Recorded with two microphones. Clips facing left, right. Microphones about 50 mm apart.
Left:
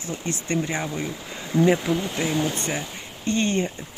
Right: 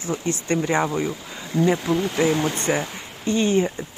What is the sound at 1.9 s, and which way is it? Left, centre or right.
Speech, centre.